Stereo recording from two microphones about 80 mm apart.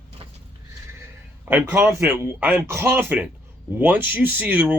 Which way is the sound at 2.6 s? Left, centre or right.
Right.